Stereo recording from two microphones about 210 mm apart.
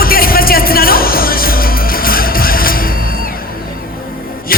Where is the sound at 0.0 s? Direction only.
45° left (ahead or behind).